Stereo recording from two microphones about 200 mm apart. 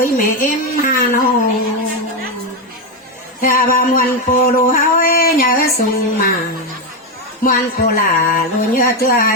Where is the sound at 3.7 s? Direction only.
45° left (ahead or behind).